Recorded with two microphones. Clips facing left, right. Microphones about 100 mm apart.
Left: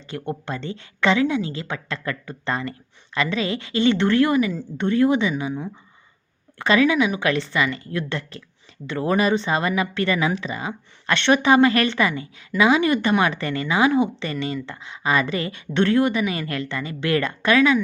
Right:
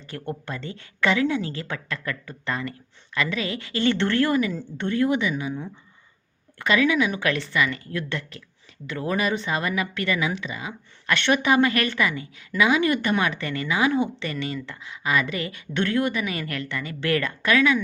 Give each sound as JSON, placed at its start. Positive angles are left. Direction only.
{"t": 0.1, "sound": "speech", "side_deg": 20}